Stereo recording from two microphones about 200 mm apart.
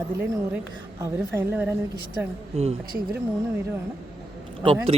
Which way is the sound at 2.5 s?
30° right (ahead or behind).